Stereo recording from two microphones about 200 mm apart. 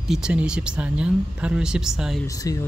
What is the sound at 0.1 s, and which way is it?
Speech, 5° right (ahead or behind).